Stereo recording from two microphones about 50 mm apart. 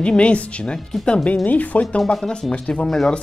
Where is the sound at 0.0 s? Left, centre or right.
Left.